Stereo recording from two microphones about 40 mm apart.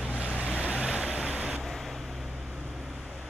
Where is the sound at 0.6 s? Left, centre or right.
Right.